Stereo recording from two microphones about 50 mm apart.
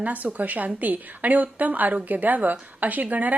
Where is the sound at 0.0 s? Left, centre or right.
Right.